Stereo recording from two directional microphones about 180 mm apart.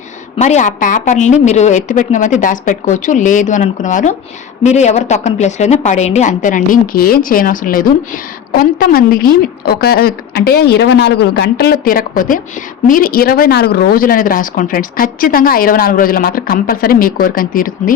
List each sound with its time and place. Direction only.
0.3 s a woman's voice: 40° left (ahead or behind)